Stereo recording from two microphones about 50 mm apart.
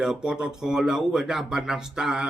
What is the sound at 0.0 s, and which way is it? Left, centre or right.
A man's voice, centre.